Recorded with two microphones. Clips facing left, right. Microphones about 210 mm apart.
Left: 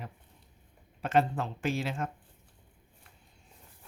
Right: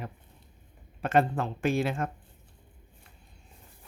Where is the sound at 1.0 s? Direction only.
55° right (ahead or behind).